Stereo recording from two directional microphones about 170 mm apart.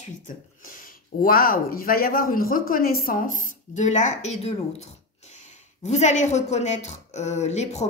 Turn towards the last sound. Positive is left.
turn(degrees=40)  # may be behind; listen again after turning